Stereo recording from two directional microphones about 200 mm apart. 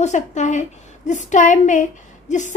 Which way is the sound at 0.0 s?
35° left (ahead or behind).